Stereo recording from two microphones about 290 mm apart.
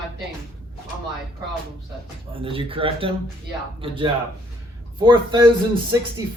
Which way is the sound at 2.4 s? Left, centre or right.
Centre.